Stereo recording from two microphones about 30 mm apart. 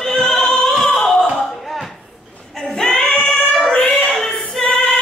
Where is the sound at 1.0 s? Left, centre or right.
Centre.